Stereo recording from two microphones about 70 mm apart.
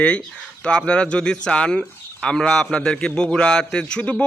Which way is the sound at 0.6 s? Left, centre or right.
Centre.